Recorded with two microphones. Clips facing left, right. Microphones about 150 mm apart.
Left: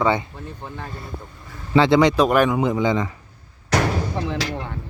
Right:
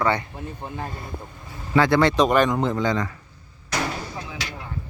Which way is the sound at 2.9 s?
20° left (ahead or behind).